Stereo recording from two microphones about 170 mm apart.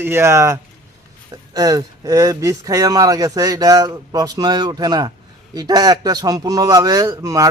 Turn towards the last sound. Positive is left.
turn(degrees=-20)  # may be behind; listen again after turning